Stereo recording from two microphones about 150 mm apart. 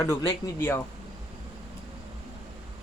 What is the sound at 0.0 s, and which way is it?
Speech, 20° left (ahead or behind).